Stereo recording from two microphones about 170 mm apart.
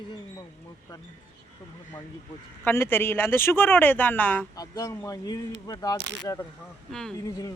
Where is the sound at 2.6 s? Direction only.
15° left (ahead or behind).